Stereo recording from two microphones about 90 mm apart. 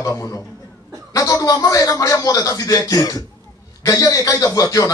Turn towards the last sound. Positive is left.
turn(degrees=40)  # may be behind; listen again after turning